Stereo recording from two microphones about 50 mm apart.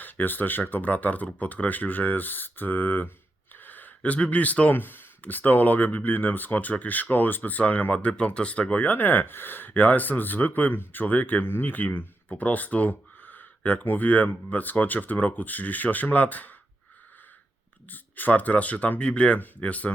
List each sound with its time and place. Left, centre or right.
0.0 s speech: left
3.5 s gasp: left
4.7 s speech: left
17.8 s speech: left
19.4 s speech: left